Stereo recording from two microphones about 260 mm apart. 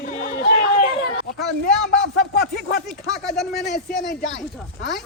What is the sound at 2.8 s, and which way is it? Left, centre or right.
Speech, centre.